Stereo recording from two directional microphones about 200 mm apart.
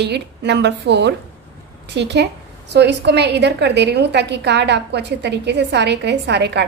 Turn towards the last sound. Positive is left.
turn(degrees=-60)  # may be behind; listen again after turning